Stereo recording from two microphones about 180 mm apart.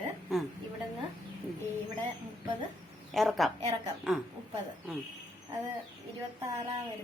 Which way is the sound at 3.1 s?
Centre (ahead or behind).